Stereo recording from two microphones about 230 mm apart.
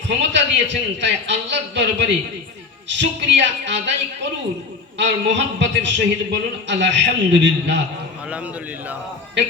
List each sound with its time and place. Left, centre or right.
0.2 s a man's voice: right